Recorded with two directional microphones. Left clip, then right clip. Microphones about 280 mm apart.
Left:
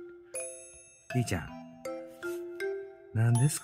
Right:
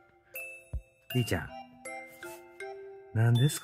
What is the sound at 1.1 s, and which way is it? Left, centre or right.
Music, centre.